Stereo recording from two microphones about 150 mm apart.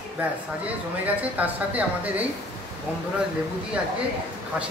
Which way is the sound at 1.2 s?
10° right (ahead or behind).